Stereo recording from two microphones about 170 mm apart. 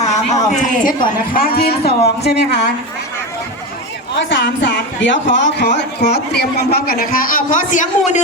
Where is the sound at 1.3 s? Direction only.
60° left (ahead or behind); by 2.6 s 85° left.